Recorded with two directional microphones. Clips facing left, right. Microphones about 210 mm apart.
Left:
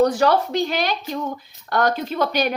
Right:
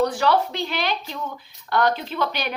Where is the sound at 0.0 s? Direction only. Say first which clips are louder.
Left 3 dB; 45° left (ahead or behind).